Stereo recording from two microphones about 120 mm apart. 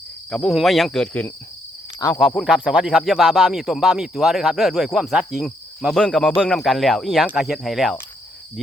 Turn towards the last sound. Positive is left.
turn(degrees=0)  # may be behind; listen again after turning